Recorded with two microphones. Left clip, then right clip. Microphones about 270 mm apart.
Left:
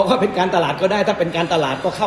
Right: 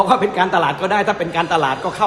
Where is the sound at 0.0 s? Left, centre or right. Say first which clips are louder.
Right 2 dB; centre.